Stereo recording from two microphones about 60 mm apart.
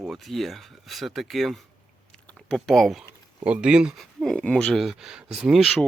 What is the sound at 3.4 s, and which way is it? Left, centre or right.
Speech, centre.